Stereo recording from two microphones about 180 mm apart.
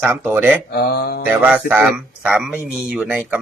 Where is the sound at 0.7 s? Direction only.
65° left (ahead or behind).